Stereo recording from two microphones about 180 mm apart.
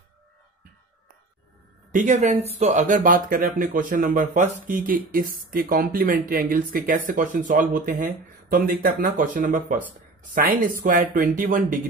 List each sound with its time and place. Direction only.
1.9 s speech: 45° right (ahead or behind)
10.8 s speech: 50° right (ahead or behind)